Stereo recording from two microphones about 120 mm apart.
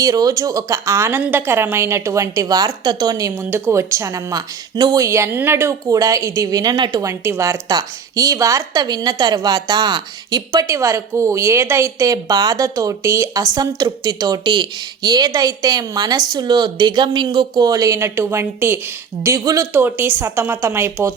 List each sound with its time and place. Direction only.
0.0 s speech: 30° right (ahead or behind)
7.0 s a woman's voice: 25° right (ahead or behind)